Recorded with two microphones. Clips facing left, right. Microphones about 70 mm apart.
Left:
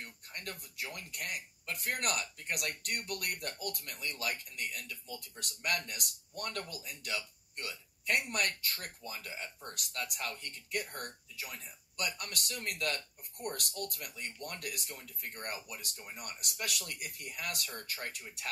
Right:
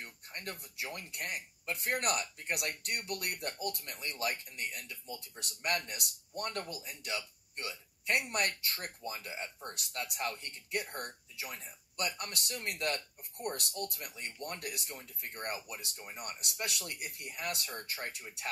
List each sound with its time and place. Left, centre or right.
0.0 s speech: right